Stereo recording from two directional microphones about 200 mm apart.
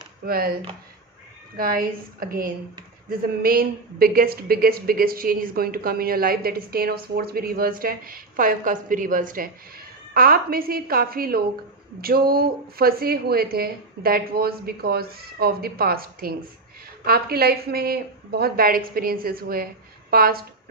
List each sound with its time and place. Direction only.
0.3 s speech: 50° right (ahead or behind)
1.5 s a woman's voice: 45° right (ahead or behind)